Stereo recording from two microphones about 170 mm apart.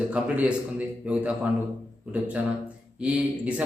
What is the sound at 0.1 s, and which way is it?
A man's voice, 10° right (ahead or behind).